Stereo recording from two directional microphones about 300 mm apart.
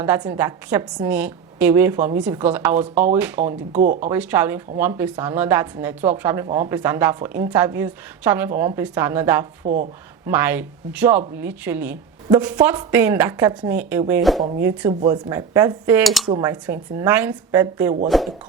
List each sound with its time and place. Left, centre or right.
0.0 s speech: centre
3.7 s speech: right
4.1 s speech: centre